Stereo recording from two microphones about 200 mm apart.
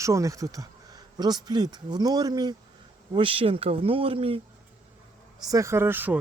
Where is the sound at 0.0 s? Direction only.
15° right (ahead or behind).